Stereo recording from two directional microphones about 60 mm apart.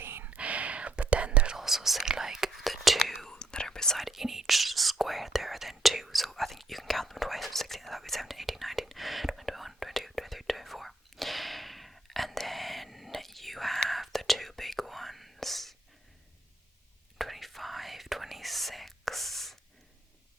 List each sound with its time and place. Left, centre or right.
0.0 s whispering: right
0.3 s whispering: right
1.5 s whispering: centre
3.3 s whispering: centre
4.0 s whispering: centre
17.2 s whispering: centre